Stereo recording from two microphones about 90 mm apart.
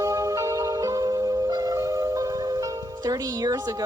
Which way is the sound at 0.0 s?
40° right (ahead or behind).